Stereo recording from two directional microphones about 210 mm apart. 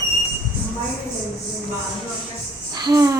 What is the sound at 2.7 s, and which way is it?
Speech, 20° right (ahead or behind).